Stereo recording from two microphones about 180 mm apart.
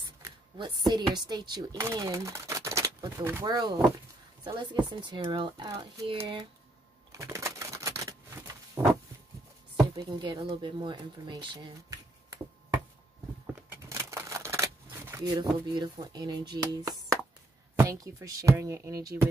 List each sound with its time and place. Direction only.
0.2 s speech: 25° right (ahead or behind)
7.1 s a sound: 15° right (ahead or behind)
9.8 s speech: 20° right (ahead or behind)
13.7 s shuffling cards: 15° right (ahead or behind)
15.6 s speech: 25° right (ahead or behind)